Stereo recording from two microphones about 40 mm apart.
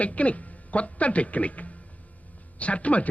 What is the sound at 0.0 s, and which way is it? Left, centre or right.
A woman's voice, left.